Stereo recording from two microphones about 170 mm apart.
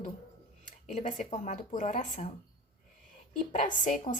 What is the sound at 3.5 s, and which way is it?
Speech, 50° left (ahead or behind).